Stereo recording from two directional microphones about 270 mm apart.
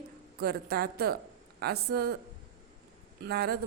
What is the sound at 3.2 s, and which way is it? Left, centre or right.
Speech, right.